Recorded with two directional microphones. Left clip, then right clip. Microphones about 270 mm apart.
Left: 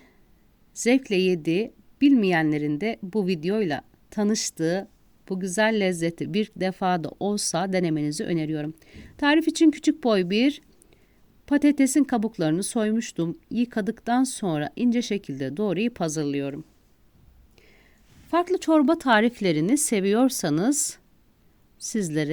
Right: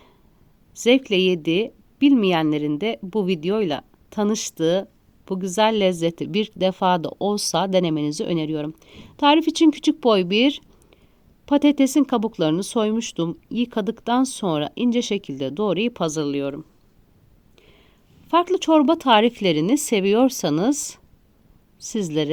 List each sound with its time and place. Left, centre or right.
0.7 s speech: left
17.6 s a sound: left
18.4 s speech: left
19.7 s speech: left
20.0 s speech: left
20.3 s speech: left
21.8 s speech: left